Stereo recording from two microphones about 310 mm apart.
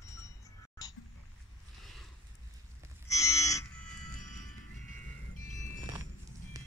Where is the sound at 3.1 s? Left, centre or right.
Centre.